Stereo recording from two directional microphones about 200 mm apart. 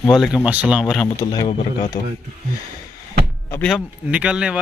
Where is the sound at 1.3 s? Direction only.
25° left (ahead or behind).